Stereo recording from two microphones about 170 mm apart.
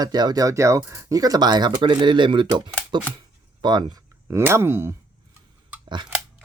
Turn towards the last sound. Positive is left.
turn(degrees=-25)  # may be behind; listen again after turning